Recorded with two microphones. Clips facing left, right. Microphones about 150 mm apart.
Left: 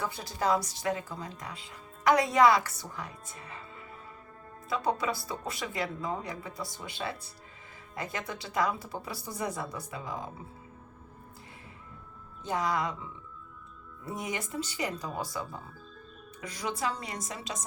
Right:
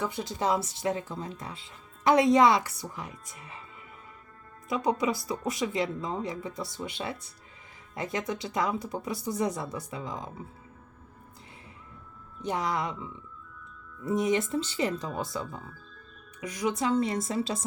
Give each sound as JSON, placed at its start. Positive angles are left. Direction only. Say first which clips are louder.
{"t": 0.0, "sound": "speech", "louder": "right 2 dB", "side_deg": -20}
{"t": 4.7, "sound": "speech", "louder": "right 3 dB", "side_deg": -20}
{"t": 12.4, "sound": "speech", "louder": "even", "side_deg": -20}